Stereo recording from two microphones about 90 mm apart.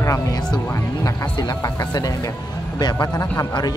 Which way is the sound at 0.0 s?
45° left (ahead or behind).